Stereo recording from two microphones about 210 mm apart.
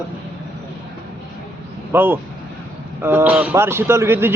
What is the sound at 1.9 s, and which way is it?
Speech, 10° right (ahead or behind).